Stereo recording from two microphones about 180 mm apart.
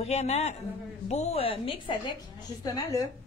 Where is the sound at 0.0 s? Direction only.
35° left (ahead or behind).